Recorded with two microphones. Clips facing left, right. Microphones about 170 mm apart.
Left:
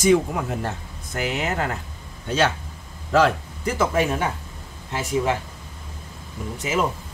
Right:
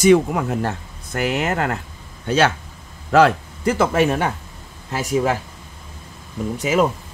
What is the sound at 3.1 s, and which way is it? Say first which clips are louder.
Speech: right 4 dB; 70° right (ahead or behind).